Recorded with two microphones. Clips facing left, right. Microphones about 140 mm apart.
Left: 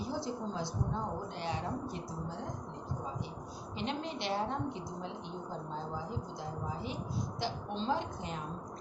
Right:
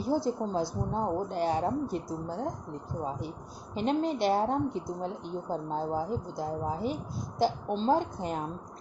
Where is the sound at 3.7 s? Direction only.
45° right (ahead or behind).